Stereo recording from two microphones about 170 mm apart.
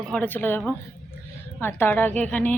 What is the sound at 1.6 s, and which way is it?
Speech, 10° left (ahead or behind).